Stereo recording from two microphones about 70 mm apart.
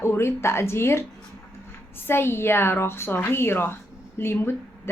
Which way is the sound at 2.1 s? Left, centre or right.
Left.